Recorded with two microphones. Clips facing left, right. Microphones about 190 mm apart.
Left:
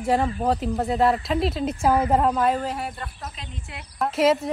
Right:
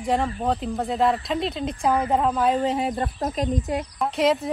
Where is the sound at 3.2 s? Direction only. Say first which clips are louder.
Right 14 dB; 40° right (ahead or behind).